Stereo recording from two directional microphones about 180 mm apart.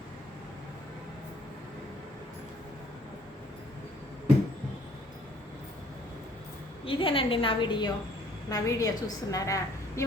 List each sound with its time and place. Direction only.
6.8 s a woman's voice: 30° left (ahead or behind)